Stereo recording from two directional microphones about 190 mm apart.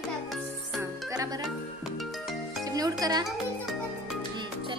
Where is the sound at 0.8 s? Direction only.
15° right (ahead or behind).